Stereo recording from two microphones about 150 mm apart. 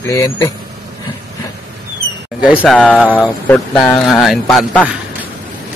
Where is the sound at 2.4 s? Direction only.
10° right (ahead or behind).